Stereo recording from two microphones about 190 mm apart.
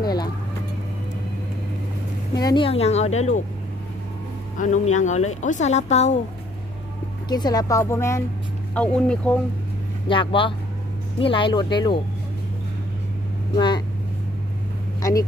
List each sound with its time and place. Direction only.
0.0 s speech: 20° left (ahead or behind)
2.3 s speech: 20° left (ahead or behind)
4.6 s speech: 40° left (ahead or behind)
7.2 s a woman's voice: 20° left (ahead or behind); by 9.4 s 5° left (ahead or behind)
10.0 s speech: 25° left (ahead or behind)
13.6 s speech: 25° left (ahead or behind)
15.0 s a sound: 15° left (ahead or behind)